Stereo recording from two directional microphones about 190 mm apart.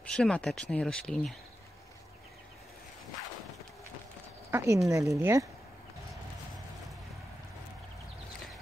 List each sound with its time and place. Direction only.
0.0 s speech: 5° left (ahead or behind)
4.5 s speech: 10° right (ahead or behind)